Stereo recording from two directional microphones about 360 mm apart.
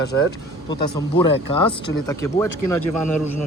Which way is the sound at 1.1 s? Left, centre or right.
Centre.